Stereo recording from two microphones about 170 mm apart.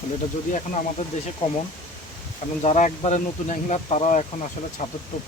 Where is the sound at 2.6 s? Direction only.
45° left (ahead or behind).